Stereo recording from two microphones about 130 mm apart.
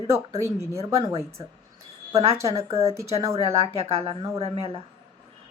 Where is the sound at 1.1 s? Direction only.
50° right (ahead or behind).